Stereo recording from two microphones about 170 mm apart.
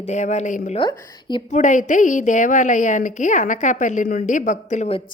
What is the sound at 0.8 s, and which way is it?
Speech, 25° left (ahead or behind).